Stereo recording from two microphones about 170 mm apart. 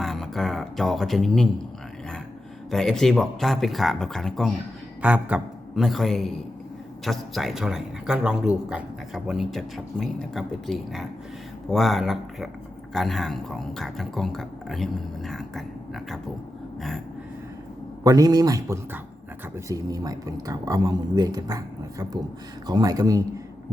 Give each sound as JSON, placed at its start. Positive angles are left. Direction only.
{"t": 0.0, "sound": "speech", "side_deg": 0}
{"t": 2.6, "sound": "speech", "side_deg": 0}
{"t": 18.0, "sound": "speech", "side_deg": -20}